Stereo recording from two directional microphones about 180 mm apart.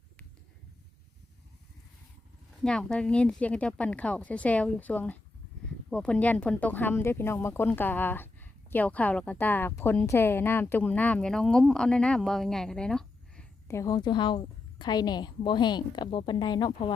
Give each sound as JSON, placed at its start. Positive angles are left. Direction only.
{"t": 2.6, "sound": "speech", "side_deg": 5}
{"t": 13.7, "sound": "a woman's voice", "side_deg": 15}